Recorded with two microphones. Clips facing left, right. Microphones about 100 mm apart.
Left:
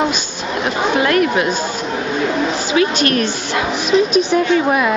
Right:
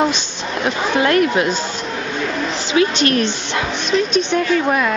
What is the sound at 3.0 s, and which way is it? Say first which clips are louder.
Speech: even; 25° right (ahead or behind).